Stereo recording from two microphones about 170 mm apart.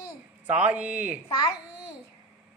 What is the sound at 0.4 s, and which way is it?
Speech, 10° right (ahead or behind).